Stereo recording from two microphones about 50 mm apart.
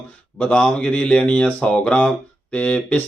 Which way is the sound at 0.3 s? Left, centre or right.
Left.